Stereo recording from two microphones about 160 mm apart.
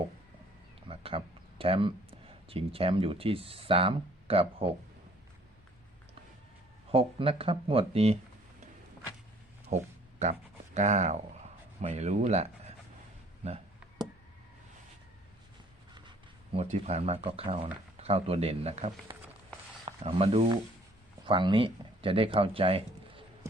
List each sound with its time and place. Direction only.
0.9 s speech: 35° right (ahead or behind)
6.9 s speech: 35° right (ahead or behind)
9.6 s a sound: 45° right (ahead or behind)
10.8 s speech: 45° right (ahead or behind)
16.0 s speech: 35° right (ahead or behind)